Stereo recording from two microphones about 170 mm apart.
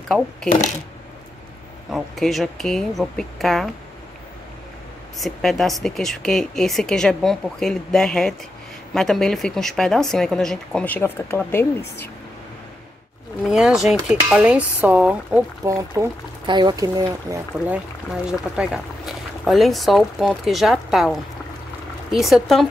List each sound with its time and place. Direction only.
0.1 s a woman's voice: 5° left (ahead or behind)
1.9 s a woman's voice: centre (ahead or behind)
5.2 s a woman's voice: centre (ahead or behind)
13.5 s a woman's voice: centre (ahead or behind); by 17.4 s 20° right (ahead or behind)
18.6 s a woman's voice: centre (ahead or behind)